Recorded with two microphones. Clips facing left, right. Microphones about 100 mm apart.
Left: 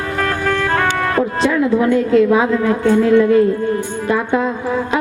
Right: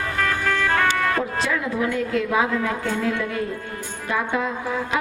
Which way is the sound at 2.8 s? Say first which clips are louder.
Left 12 dB; 50° left (ahead or behind).